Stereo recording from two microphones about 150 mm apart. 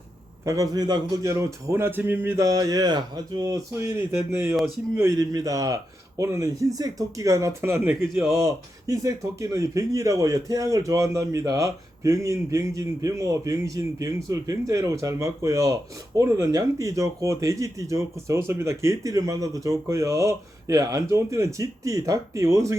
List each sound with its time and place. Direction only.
0.4 s speech: 20° right (ahead or behind)
7.9 s a man's voice: centre (ahead or behind)
8.4 s speech: 20° right (ahead or behind)